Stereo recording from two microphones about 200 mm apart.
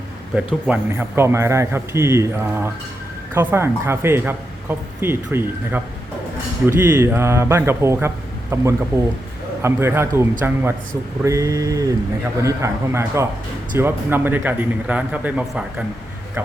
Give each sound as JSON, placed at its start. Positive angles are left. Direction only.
{"t": 0.3, "sound": "speech", "side_deg": -10}